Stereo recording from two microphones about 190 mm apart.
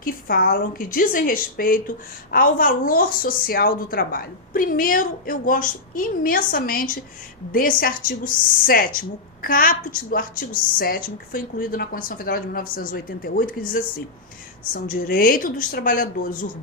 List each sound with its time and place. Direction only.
0.0 s a woman's voice: 50° left (ahead or behind)